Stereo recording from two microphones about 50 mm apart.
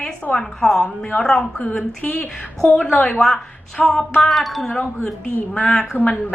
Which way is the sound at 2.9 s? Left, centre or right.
Centre.